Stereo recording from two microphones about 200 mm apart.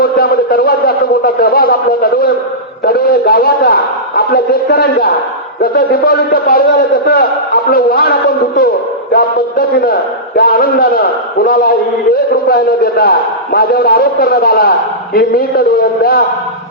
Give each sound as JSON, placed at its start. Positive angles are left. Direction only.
{"t": 0.0, "sound": "a sound", "side_deg": 50}
{"t": 5.7, "sound": "a man's voice", "side_deg": 50}
{"t": 9.1, "sound": "a man's voice", "side_deg": 50}